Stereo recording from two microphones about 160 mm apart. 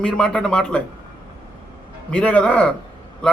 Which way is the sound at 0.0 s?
5° left (ahead or behind).